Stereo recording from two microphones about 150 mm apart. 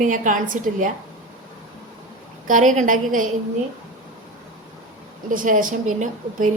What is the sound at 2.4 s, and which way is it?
Speech, 60° right (ahead or behind).